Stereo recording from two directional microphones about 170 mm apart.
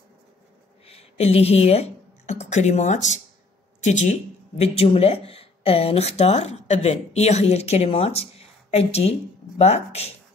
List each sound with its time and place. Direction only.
0.8 s speech: 35° left (ahead or behind)